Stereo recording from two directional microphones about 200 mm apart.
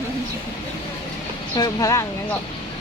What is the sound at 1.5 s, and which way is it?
Speech, 20° left (ahead or behind).